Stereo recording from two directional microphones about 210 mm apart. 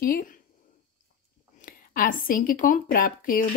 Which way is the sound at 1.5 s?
40° left (ahead or behind).